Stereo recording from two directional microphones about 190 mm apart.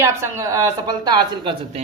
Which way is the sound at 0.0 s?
15° right (ahead or behind).